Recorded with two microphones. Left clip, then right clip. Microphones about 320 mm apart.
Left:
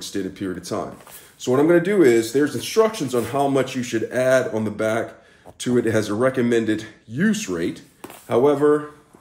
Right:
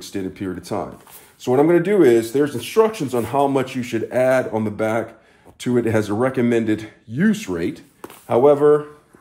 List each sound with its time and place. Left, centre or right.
0.0 s speech: centre